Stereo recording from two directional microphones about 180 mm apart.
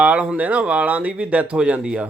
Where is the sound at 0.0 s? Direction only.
5° right (ahead or behind).